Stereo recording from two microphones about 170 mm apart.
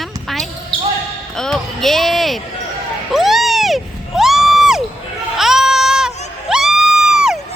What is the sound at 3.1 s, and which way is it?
Crowd, centre (ahead or behind).